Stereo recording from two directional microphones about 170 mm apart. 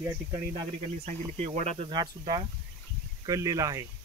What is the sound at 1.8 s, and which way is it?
Speech, 25° right (ahead or behind).